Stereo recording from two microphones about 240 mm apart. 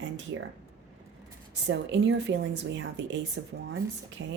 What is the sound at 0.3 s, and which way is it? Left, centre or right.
Speech, right.